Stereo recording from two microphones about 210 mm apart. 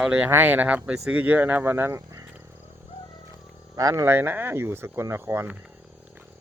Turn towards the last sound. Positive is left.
turn(degrees=-10)  # may be behind; listen again after turning